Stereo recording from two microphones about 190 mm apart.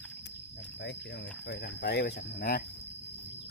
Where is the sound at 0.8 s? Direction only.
65° left (ahead or behind).